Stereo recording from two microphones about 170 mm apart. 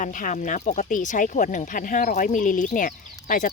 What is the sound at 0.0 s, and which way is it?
Speech, 50° left (ahead or behind).